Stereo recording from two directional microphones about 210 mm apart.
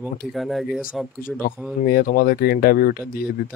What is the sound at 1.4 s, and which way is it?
Speech, 40° left (ahead or behind).